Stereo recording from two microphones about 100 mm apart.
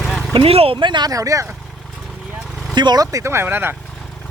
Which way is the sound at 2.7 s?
45° right (ahead or behind).